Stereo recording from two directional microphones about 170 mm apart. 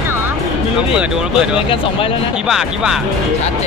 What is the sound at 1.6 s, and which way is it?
Speech, 30° left (ahead or behind).